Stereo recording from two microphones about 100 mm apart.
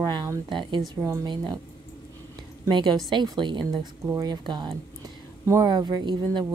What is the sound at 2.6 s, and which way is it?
A woman's voice, 50° right (ahead or behind).